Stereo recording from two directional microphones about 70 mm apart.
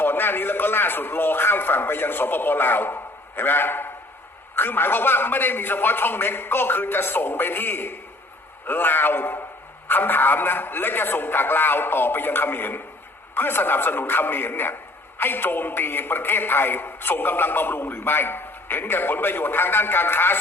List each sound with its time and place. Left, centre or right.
0.0 s a man's voice: left